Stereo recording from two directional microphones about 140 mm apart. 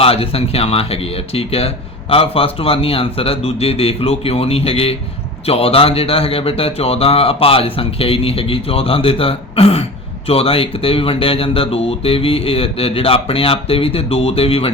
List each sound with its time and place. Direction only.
0.0 s speech: 45° left (ahead or behind)